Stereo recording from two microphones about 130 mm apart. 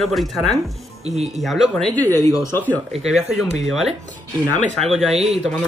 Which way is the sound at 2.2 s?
25° left (ahead or behind).